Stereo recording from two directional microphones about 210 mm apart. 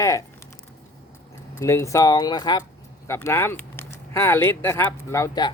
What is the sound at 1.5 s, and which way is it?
Speech, 10° left (ahead or behind).